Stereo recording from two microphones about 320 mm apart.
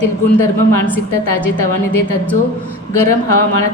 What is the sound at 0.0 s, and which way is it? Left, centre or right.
A woman's voice, left.